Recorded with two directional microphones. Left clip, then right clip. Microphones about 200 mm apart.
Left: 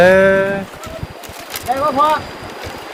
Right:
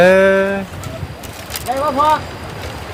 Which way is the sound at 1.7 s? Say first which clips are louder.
Left 1 dB; 25° right (ahead or behind).